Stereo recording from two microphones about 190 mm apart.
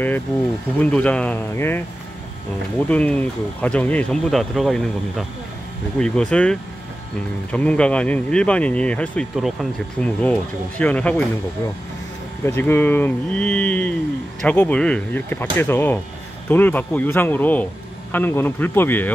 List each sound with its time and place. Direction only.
0.7 s speech: 5° left (ahead or behind)
2.9 s speech: 5° left (ahead or behind)
12.4 s speech: 10° left (ahead or behind)